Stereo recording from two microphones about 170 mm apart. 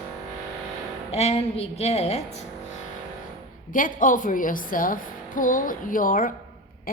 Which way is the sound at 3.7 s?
50° left (ahead or behind).